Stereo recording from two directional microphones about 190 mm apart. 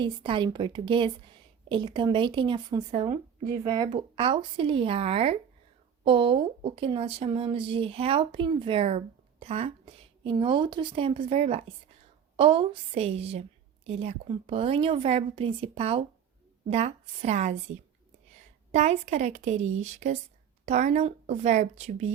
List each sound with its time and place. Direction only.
0.0 s a woman's voice: 25° right (ahead or behind)
18.7 s a woman's voice: 35° right (ahead or behind)